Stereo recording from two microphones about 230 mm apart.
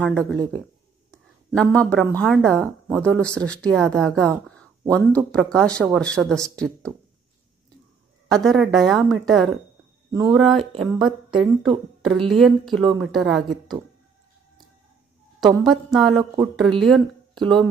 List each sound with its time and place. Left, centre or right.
0.0 s a woman's voice: centre
1.1 s a sound: centre
1.8 s a woman's voice: centre
8.3 s a woman's voice: centre
10.1 s speech: centre
10.4 s a woman's voice: centre
15.6 s a woman's voice: centre